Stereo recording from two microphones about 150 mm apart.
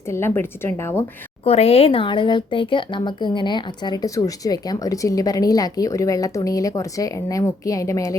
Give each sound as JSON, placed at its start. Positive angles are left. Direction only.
{"t": 0.1, "sound": "a woman's voice", "side_deg": 15}
{"t": 1.5, "sound": "a woman's voice", "side_deg": 40}